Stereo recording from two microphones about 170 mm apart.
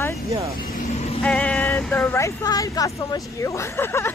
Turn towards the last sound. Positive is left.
turn(degrees=15)  # may be behind; listen again after turning